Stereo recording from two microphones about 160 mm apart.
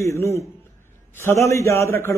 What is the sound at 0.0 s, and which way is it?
A man's voice, 15° left (ahead or behind).